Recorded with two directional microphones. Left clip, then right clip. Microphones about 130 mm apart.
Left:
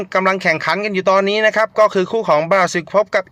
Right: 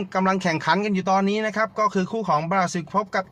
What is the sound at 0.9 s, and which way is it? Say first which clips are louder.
Speech: left 8 dB; 35° left (ahead or behind).